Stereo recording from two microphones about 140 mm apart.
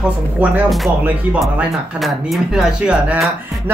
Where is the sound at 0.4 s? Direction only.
10° right (ahead or behind).